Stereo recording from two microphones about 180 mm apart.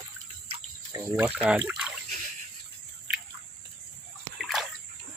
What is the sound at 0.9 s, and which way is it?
Speech, 10° right (ahead or behind).